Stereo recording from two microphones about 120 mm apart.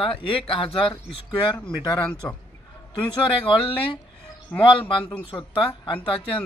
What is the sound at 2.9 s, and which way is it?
Speech, 40° left (ahead or behind).